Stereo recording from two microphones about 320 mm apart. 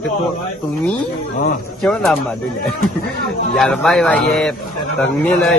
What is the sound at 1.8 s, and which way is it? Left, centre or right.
Speech, centre.